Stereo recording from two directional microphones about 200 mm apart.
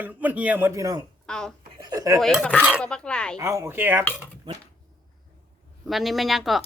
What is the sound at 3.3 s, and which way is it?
Speech, 15° right (ahead or behind).